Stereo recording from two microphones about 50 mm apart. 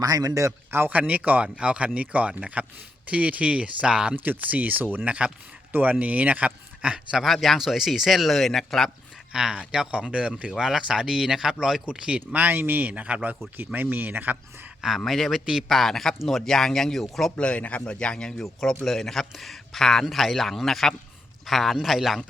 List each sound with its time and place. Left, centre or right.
0.9 s speech: right
4.2 s speech: right
5.0 s speech: right
7.2 s speech: centre
9.3 s speech: centre
10.5 s speech: centre
11.9 s speech: right
12.4 s speech: right
12.9 s speech: right
14.8 s speech: centre
17.3 s speech: left
17.9 s speech: centre
20.1 s speech: centre